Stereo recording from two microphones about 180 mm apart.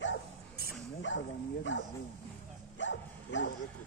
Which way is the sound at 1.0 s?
90° left.